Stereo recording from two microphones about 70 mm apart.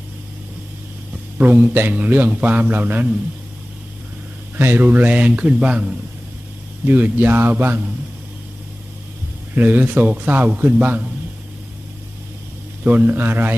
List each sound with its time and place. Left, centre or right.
1.4 s a man's voice: right
4.5 s a man's voice: right; by 5.9 s centre
6.8 s a man's voice: right
9.6 s a man's voice: right
12.8 s a man's voice: right